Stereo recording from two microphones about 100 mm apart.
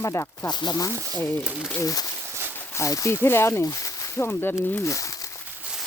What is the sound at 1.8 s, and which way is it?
Speech, 35° left (ahead or behind).